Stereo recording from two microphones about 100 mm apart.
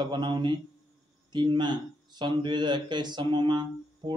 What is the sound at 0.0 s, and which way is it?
Speech, 50° right (ahead or behind).